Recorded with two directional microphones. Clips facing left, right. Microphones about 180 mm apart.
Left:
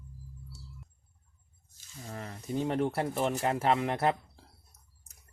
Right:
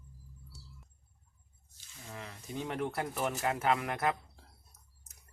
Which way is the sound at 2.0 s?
40° left (ahead or behind).